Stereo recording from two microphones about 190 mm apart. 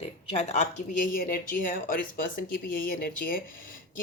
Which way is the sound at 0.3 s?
35° left (ahead or behind).